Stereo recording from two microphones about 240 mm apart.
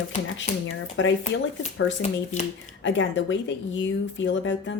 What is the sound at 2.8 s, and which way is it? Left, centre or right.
Speech, left.